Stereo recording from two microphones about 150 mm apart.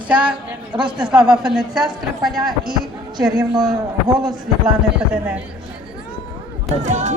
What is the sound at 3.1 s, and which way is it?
Speech, 25° right (ahead or behind).